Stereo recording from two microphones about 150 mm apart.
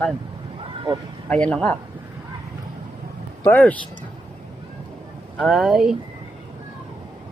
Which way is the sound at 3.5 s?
10° left (ahead or behind).